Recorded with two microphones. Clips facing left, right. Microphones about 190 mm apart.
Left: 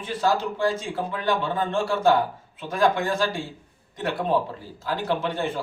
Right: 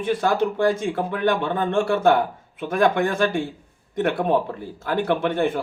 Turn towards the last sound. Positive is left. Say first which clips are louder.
# right 5 dB
turn(degrees=-55)  # may be behind; listen again after turning